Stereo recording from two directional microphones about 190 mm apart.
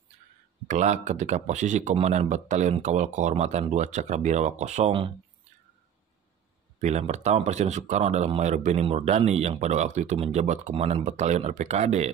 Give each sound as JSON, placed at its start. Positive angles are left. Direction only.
{"t": 0.7, "sound": "speech", "side_deg": -40}
{"t": 6.8, "sound": "speech", "side_deg": -35}